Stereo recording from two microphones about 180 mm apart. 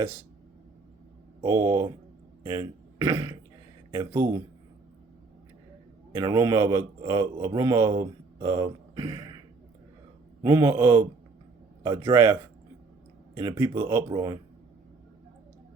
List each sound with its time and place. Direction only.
1.4 s a man's voice: 15° right (ahead or behind)
6.1 s a man's voice: 20° right (ahead or behind)
10.4 s a man's voice: 15° right (ahead or behind)